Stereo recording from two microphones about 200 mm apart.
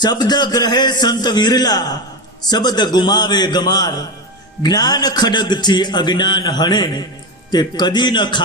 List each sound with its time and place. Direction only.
0.0 s a man's voice: 20° left (ahead or behind)